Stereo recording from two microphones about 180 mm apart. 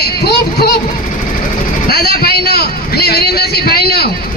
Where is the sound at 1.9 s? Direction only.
60° left (ahead or behind).